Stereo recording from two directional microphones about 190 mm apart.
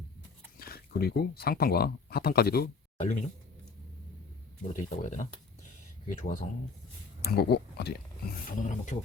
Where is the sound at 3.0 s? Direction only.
40° left (ahead or behind).